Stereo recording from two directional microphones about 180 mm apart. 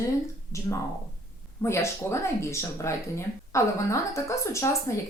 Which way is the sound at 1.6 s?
15° left (ahead or behind).